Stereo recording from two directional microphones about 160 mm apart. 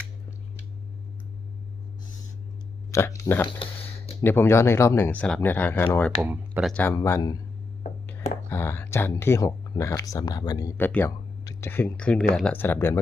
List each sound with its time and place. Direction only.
2.9 s speech: 20° left (ahead or behind)
3.6 s a sound: 35° left (ahead or behind)
4.2 s speech: 15° left (ahead or behind)
6.2 s speech: 10° right (ahead or behind)
6.7 s speech: 15° left (ahead or behind)